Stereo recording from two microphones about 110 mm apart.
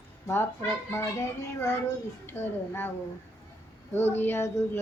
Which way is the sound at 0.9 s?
25° left (ahead or behind).